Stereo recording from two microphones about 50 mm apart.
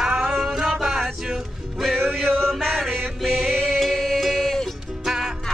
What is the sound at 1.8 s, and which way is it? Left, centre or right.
Male singing, centre.